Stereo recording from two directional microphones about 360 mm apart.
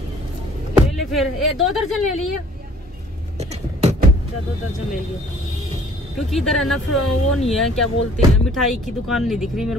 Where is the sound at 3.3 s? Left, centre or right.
Centre.